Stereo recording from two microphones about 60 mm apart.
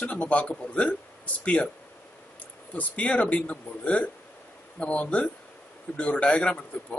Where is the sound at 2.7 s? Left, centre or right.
Left.